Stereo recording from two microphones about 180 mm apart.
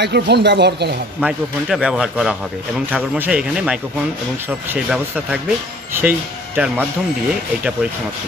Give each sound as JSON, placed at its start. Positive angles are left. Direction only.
{"t": 0.0, "sound": "speech", "side_deg": -70}
{"t": 1.2, "sound": "a man's voice", "side_deg": -5}
{"t": 4.7, "sound": "a man's voice", "side_deg": -5}